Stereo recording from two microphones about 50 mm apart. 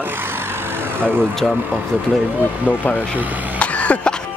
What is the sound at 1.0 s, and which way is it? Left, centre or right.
Speech, right.